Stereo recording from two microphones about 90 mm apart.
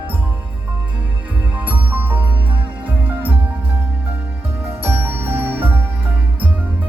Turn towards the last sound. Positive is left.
turn(degrees=-20)  # may be behind; listen again after turning